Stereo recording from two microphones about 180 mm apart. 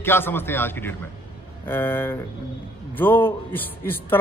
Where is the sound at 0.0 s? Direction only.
10° left (ahead or behind).